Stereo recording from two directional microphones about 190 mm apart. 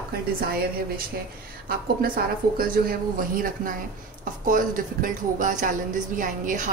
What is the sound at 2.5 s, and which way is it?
Speech, 50° right (ahead or behind).